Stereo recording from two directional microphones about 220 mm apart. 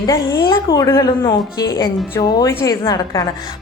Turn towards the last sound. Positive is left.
turn(degrees=15)  # may be behind; listen again after turning